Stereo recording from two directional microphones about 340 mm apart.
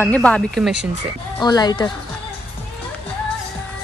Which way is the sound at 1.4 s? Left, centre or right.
Centre.